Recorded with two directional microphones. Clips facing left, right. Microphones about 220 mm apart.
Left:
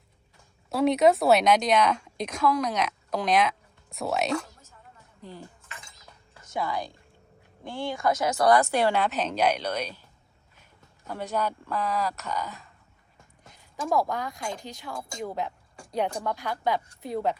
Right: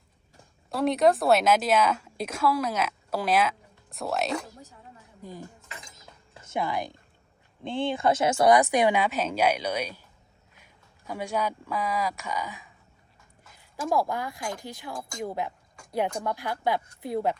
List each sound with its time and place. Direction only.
0.7 s a woman's voice: centre (ahead or behind)
5.2 s a woman's voice: 15° right (ahead or behind)
6.3 s a woman's voice: 25° right (ahead or behind)
13.7 s a woman's voice: 5° right (ahead or behind)